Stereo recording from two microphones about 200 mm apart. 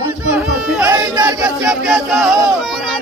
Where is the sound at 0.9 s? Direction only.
20° right (ahead or behind).